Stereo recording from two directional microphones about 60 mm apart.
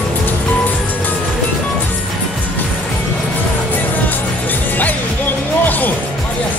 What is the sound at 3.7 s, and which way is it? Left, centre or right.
Music, left.